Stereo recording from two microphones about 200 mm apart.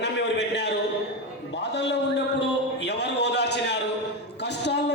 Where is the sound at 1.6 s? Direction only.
60° left (ahead or behind).